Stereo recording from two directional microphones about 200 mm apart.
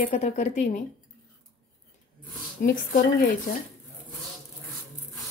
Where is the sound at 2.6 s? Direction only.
45° left (ahead or behind).